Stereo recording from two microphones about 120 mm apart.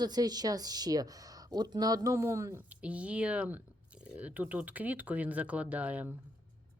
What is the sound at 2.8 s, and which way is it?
Speech, 10° right (ahead or behind).